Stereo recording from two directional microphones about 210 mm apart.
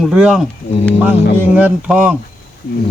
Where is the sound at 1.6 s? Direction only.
5° right (ahead or behind).